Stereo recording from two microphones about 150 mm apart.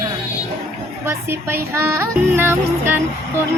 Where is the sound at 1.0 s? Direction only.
15° right (ahead or behind).